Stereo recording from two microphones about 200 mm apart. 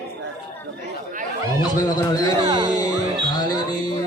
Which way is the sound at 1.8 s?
20° left (ahead or behind).